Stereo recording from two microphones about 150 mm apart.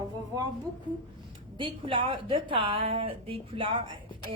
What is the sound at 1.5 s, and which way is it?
A woman's voice, 35° right (ahead or behind).